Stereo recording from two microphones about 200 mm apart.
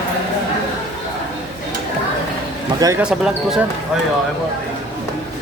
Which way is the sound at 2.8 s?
20° right (ahead or behind).